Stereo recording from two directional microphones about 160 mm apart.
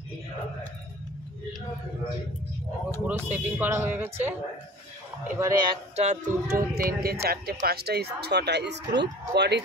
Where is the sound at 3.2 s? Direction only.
10° right (ahead or behind).